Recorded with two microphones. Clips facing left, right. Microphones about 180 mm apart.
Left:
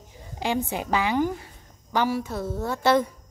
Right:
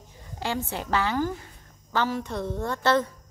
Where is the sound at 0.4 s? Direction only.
15° left (ahead or behind).